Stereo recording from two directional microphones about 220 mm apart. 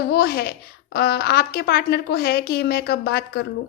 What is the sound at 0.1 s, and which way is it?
A woman's voice, 45° left (ahead or behind).